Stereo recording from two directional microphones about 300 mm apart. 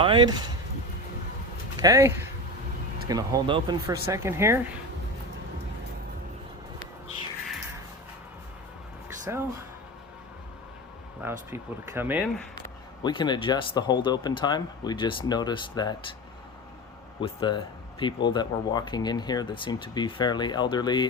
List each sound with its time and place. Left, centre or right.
0.0 s speech: centre
1.7 s speech: centre
9.0 s a sound: centre
11.2 s speech: centre
12.5 s speech: centre
17.2 s speech: centre